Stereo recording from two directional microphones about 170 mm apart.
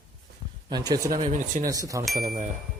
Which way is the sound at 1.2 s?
50° right (ahead or behind).